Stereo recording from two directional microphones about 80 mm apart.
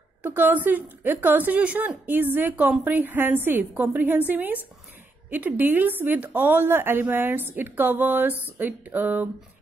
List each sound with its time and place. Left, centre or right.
0.2 s a woman's voice: right